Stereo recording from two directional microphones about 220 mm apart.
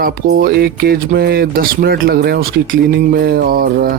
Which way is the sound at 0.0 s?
45° right (ahead or behind).